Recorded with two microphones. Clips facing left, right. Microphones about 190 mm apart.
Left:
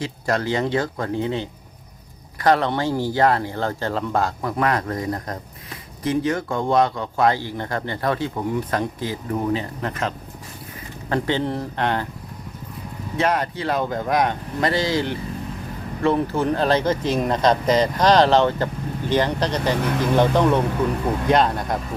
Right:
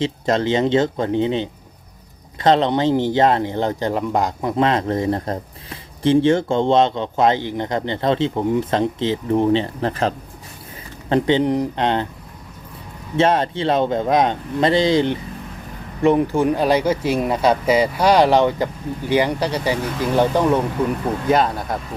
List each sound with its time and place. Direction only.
0.0 s speech: 20° right (ahead or behind)
11.1 s speech: 20° right (ahead or behind)
13.1 s speech: 25° right (ahead or behind); by 21.8 s centre (ahead or behind)